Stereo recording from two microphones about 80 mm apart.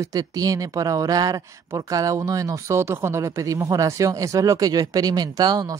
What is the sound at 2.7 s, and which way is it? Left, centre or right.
Speech, right.